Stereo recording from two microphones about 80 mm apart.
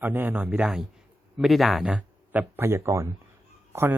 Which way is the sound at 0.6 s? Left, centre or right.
Centre.